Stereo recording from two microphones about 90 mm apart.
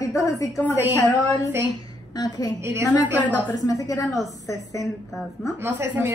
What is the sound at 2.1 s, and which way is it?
Speech, 50° left (ahead or behind).